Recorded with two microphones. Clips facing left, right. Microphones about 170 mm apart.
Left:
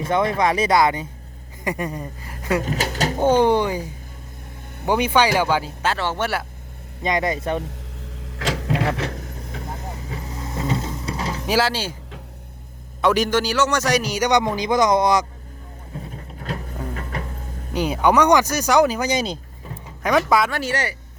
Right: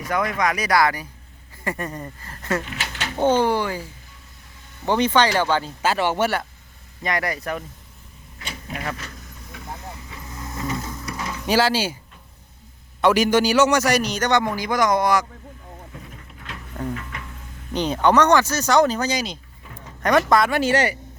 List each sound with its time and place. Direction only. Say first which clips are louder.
0.0 s speech: left 3 dB; 25° left (ahead or behind)
2.6 s speech: left 8 dB; 40° left (ahead or behind)
3.2 s speech: left 2 dB; 15° left (ahead or behind)
4.9 s speech: left 1 dB; 10° left (ahead or behind)
5.8 s speech: right 2 dB; 10° right (ahead or behind)
7.0 s speech: left 4 dB; 20° left (ahead or behind)
8.4 s vehicle: left 10 dB; 85° left; by 9.6 s 55° left (ahead or behind)
10.1 s vehicle: left 4 dB; 30° left (ahead or behind)
11.4 s speech: right 2 dB; centre (ahead or behind)
13.0 s speech: right 2 dB; centre (ahead or behind)
14.1 s speech: left 2 dB; 15° left (ahead or behind)
16.0 s music: left 6 dB; 35° left (ahead or behind)
17.7 s speech: even; 10° left (ahead or behind)
20.5 s speech: right 5 dB; 20° right (ahead or behind)